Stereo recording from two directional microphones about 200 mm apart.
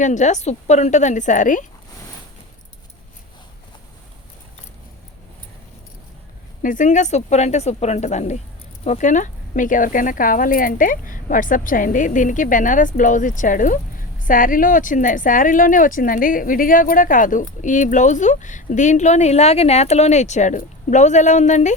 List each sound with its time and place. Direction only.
0.0 s speech: 35° left (ahead or behind)
6.6 s speech: 40° left (ahead or behind)